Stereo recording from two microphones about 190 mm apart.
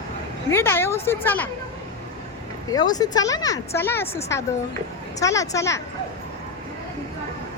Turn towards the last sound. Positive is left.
turn(degrees=15)  # may be behind; listen again after turning